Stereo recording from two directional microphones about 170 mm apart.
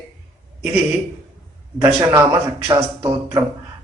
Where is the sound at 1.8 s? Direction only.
15° right (ahead or behind).